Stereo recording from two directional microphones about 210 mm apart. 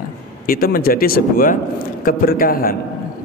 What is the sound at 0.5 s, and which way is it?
A man's voice, 45° left (ahead or behind).